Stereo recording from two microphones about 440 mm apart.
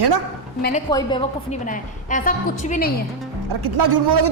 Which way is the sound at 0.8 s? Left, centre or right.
Centre.